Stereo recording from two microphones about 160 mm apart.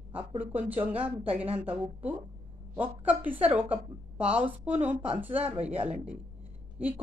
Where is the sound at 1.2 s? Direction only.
35° right (ahead or behind).